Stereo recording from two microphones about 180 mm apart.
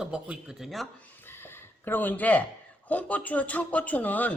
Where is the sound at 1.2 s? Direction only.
10° left (ahead or behind).